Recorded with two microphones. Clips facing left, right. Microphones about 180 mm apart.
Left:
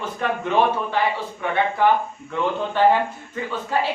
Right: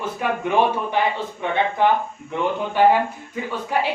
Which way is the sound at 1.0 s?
20° right (ahead or behind).